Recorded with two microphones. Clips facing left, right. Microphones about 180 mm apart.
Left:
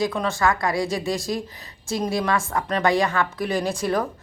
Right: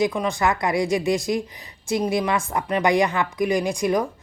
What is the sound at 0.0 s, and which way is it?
A woman's voice, 15° right (ahead or behind).